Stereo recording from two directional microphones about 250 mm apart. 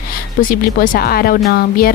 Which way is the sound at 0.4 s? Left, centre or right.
Left.